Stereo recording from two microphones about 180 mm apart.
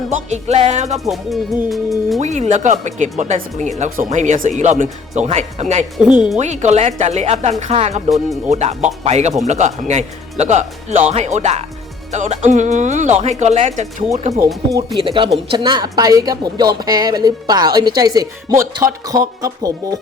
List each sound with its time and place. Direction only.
0.1 s speech: 40° right (ahead or behind)
1.0 s music: centre (ahead or behind)
2.2 s speech: 40° right (ahead or behind)
6.0 s speech: 5° right (ahead or behind)
6.3 s speech: 40° right (ahead or behind)
14.4 s speech: 20° right (ahead or behind)